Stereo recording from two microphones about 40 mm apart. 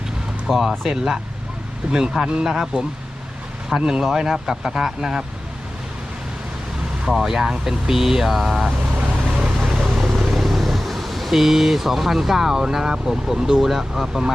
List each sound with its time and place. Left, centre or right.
0.4 s speech: centre
3.8 s speech: right
4.0 s speech: centre
7.1 s speech: centre
9.8 s speech: centre